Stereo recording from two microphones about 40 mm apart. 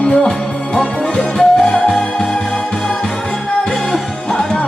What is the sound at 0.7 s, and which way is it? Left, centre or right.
Music, left.